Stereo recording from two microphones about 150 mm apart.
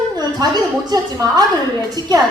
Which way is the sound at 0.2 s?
25° right (ahead or behind).